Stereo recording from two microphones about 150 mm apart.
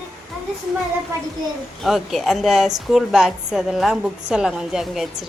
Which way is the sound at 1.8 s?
Centre (ahead or behind).